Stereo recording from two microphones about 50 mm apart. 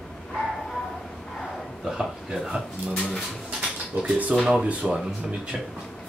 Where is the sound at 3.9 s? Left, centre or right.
Right.